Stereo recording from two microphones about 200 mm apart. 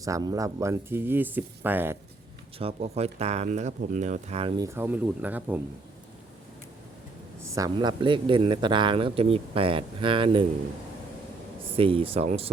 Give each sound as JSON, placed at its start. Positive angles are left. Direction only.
{"t": 0.0, "sound": "speech", "side_deg": -20}
{"t": 2.6, "sound": "speech", "side_deg": -30}
{"t": 7.5, "sound": "speech", "side_deg": -20}
{"t": 11.8, "sound": "speech", "side_deg": -25}